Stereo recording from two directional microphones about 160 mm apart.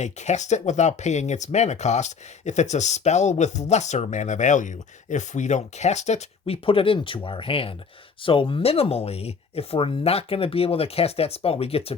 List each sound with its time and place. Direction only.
0.0 s speech: 45° left (ahead or behind)